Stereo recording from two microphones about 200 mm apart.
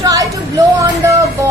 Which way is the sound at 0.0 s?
15° right (ahead or behind).